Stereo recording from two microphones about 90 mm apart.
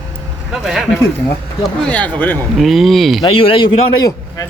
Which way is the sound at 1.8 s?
15° left (ahead or behind).